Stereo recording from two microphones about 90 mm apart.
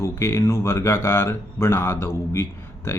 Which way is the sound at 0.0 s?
30° left (ahead or behind).